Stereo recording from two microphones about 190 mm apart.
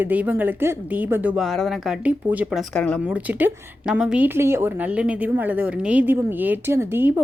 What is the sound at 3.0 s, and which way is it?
A woman's voice, 5° right (ahead or behind).